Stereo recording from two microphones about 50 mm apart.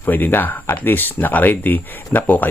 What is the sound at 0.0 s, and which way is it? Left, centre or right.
Speech, left.